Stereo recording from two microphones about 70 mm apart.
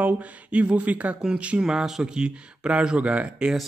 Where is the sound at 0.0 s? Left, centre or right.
Centre.